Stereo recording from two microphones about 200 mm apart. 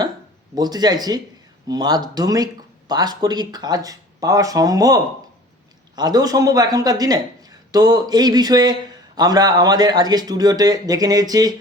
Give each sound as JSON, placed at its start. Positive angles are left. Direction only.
{"t": 0.5, "sound": "speech", "side_deg": -20}
{"t": 6.0, "sound": "speech", "side_deg": -20}